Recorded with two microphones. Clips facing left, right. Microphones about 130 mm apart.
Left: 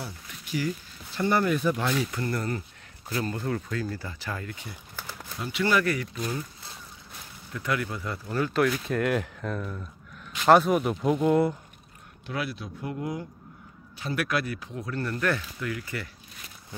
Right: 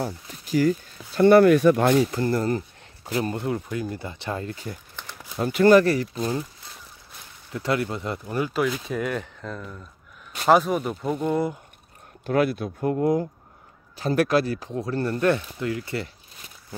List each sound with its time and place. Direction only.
0.0 s a sound: 40° right (ahead or behind)
1.2 s speech: 70° right (ahead or behind); by 2.0 s 50° right (ahead or behind)
2.0 s speech: 30° right (ahead or behind)
5.0 s a sound: 5° left (ahead or behind)
5.4 s speech: 45° right (ahead or behind); by 6.4 s 30° right (ahead or behind)
7.5 s speech: 25° right (ahead or behind)
8.5 s speech: 5° right (ahead or behind)
12.3 s speech: 50° right (ahead or behind); by 16.1 s 30° right (ahead or behind)